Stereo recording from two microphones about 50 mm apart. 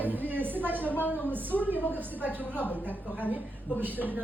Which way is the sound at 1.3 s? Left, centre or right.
Right.